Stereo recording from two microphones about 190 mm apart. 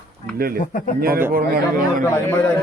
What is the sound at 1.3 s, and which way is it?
Speech, 50° right (ahead or behind).